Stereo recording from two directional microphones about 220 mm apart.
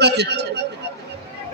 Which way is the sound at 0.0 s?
50° right (ahead or behind).